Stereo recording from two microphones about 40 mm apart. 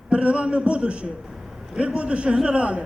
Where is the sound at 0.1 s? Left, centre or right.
Right.